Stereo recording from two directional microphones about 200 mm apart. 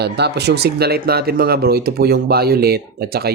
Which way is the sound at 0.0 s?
55° right (ahead or behind).